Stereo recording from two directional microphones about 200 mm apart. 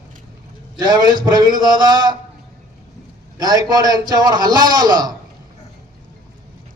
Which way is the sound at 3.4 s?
20° right (ahead or behind).